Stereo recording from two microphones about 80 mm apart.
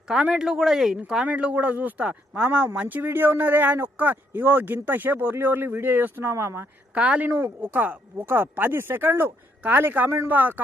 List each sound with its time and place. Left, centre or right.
0.1 s speech: centre; by 6.7 s right
6.9 s speech: centre